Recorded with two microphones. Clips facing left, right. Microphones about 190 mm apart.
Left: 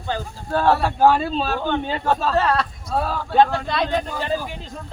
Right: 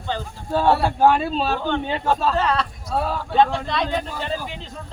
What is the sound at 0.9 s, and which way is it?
A man's voice, centre (ahead or behind).